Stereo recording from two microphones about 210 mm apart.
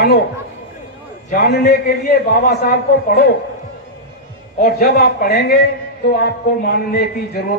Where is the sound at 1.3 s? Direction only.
45° left (ahead or behind).